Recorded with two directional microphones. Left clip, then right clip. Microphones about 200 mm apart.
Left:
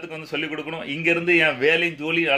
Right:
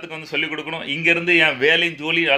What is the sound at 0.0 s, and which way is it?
A man's voice, 5° left (ahead or behind).